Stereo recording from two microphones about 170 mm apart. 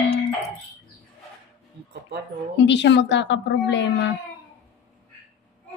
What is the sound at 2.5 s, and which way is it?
Speech, 90° left.